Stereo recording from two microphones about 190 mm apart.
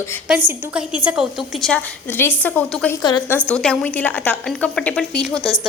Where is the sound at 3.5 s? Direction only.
5° left (ahead or behind).